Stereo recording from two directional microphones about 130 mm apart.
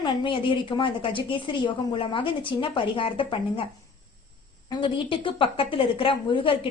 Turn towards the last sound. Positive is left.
turn(degrees=40)  # may be behind; listen again after turning